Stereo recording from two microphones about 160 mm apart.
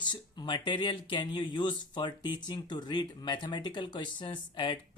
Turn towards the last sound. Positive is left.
turn(degrees=30)  # may be behind; listen again after turning